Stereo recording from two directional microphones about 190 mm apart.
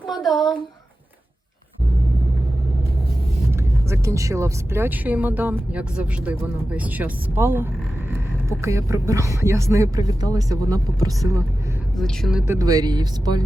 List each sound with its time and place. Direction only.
0.1 s speech: centre (ahead or behind)
3.5 s speech: 15° right (ahead or behind)
11.9 s a woman's voice: centre (ahead or behind)
12.5 s speech: 20° right (ahead or behind)